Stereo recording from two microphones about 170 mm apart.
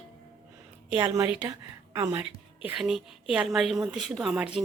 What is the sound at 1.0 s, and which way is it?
Speech, 25° right (ahead or behind).